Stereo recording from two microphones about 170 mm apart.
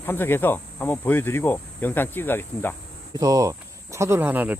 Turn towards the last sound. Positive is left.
turn(degrees=-10)  # may be behind; listen again after turning